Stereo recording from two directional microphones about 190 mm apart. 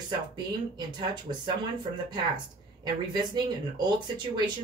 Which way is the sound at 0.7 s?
25° right (ahead or behind).